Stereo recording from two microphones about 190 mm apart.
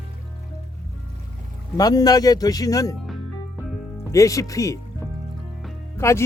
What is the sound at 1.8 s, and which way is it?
Speech, 20° left (ahead or behind).